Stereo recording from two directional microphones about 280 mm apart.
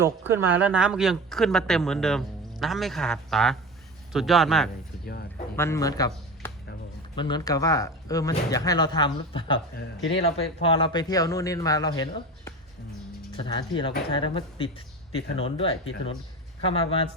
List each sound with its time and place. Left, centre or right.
0.0 s speech: centre
9.7 s speech: left
10.2 s speech: centre